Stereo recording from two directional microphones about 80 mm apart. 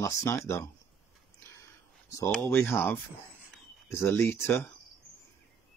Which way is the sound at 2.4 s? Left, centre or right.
Left.